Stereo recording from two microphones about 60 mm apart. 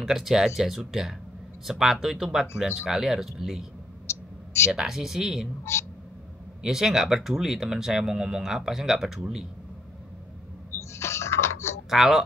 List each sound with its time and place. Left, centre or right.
0.0 s speech: centre
4.1 s a sound: left
4.7 s speech: centre
6.6 s speech: centre
10.7 s a sound: left
11.9 s speech: centre